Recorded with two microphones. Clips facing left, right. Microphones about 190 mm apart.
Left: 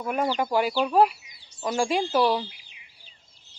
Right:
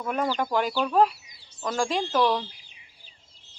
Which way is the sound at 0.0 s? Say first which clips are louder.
Left 1 dB; 10° left (ahead or behind).